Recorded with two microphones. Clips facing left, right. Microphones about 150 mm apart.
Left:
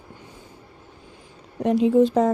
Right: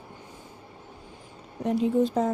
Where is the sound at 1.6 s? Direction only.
90° left.